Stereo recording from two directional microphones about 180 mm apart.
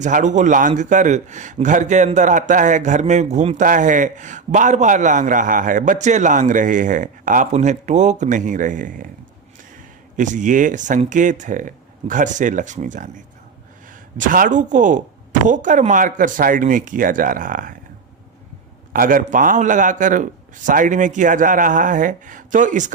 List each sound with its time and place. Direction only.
0.0 s a man's voice: 45° right (ahead or behind)
10.2 s a man's voice: 45° right (ahead or behind)
18.9 s a man's voice: 50° right (ahead or behind)